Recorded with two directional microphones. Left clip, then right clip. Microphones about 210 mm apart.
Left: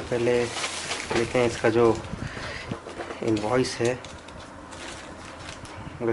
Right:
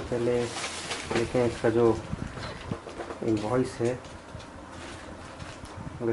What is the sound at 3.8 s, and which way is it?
Speech, 10° right (ahead or behind).